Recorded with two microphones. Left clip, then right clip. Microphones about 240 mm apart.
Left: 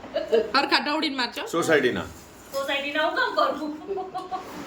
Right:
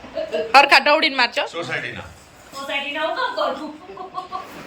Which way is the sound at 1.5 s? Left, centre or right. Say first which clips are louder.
Left 5 dB; left.